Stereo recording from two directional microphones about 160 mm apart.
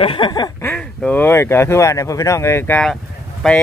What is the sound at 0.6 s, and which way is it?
Speech, 10° left (ahead or behind).